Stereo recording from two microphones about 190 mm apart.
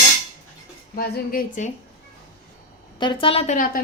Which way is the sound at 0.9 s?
55° left (ahead or behind).